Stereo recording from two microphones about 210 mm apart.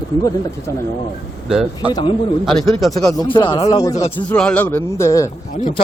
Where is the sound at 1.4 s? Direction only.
5° right (ahead or behind).